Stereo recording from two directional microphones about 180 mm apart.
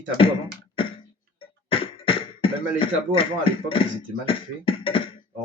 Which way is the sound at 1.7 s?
30° left (ahead or behind).